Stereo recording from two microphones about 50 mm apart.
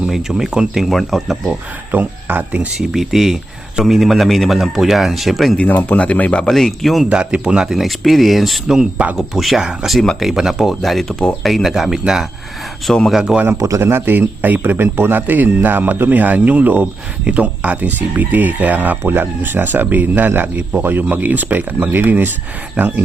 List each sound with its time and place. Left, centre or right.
0.1 s speech: centre
0.8 s a man's voice: centre
1.9 s speech: right
2.7 s a man's voice: centre
5.5 s speech: left
6.5 s a man's voice: centre
7.1 s speech: right
7.7 s a man's voice: centre
8.6 s speech: centre
9.1 s a man's voice: centre
12.9 s speech: centre
13.6 s speech: right
13.8 s speech: right